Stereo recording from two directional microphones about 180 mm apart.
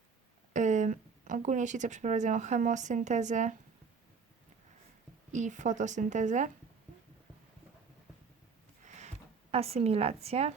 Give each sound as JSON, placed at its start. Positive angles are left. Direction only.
{"t": 0.5, "sound": "speech", "side_deg": -40}
{"t": 5.3, "sound": "a woman's voice", "side_deg": -45}
{"t": 8.8, "sound": "a sound", "side_deg": -40}